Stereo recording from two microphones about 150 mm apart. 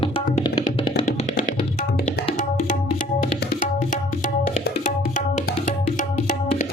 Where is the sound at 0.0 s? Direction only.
35° left (ahead or behind).